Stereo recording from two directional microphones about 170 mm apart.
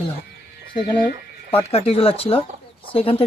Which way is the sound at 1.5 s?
35° left (ahead or behind).